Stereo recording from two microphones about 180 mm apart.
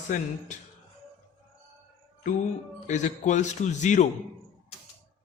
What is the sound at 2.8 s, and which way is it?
A man's voice, 40° left (ahead or behind).